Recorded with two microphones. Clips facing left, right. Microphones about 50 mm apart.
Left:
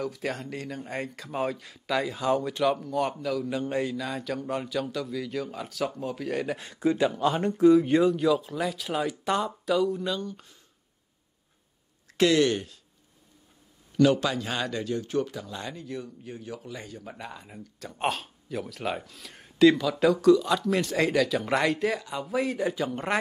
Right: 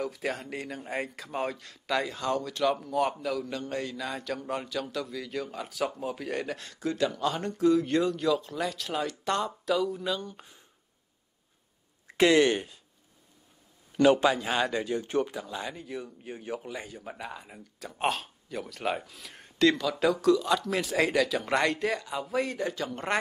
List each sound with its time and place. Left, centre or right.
0.0 s speech: centre
2.6 s speech: centre
3.5 s speech: centre
3.9 s speech: centre
6.5 s speech: centre
10.2 s speech: centre
12.1 s speech: right
13.9 s speech: right
14.3 s speech: centre
16.7 s speech: centre